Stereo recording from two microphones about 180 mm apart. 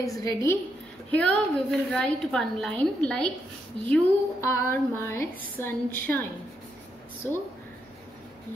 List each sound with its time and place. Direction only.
0.0 s a woman's voice: 20° left (ahead or behind)
1.1 s a woman's voice: 5° left (ahead or behind)